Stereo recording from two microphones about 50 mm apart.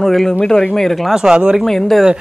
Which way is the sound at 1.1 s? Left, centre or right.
Centre.